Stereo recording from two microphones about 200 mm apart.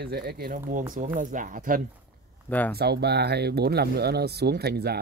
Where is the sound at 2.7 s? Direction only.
55° right (ahead or behind).